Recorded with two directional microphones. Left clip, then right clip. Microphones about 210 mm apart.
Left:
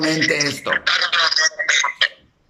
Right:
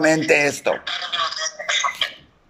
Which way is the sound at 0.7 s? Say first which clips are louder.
Left 7 dB; 45° left (ahead or behind).